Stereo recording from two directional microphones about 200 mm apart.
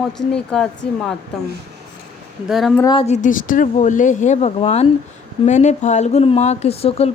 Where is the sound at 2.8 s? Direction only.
20° left (ahead or behind).